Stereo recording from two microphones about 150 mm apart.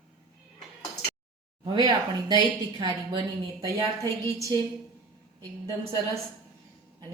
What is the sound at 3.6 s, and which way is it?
Speech, 25° right (ahead or behind).